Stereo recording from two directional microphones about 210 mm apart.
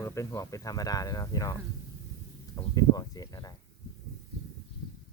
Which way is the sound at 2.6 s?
20° left (ahead or behind).